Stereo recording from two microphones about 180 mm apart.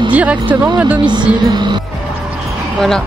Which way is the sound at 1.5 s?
25° right (ahead or behind).